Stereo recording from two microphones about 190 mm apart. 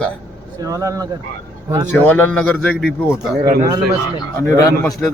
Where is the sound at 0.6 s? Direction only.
20° right (ahead or behind).